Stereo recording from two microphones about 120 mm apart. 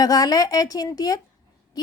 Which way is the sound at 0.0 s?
30° left (ahead or behind).